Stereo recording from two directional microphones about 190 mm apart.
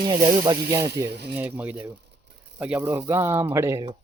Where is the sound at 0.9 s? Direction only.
60° right (ahead or behind).